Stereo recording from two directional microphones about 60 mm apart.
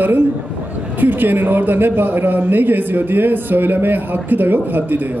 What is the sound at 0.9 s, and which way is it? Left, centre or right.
A man's voice, right.